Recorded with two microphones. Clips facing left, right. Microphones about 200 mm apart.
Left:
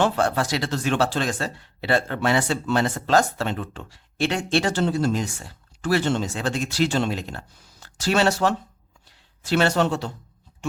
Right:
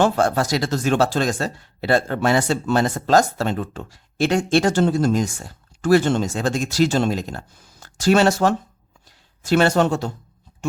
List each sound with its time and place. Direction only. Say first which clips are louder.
0.0 s speech: right 3 dB; 40° right (ahead or behind)